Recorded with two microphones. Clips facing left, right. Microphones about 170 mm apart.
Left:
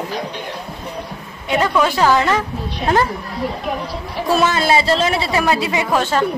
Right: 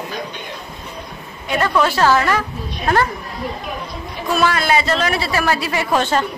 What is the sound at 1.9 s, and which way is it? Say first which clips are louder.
Speech: left 1 dB; 15° left (ahead or behind).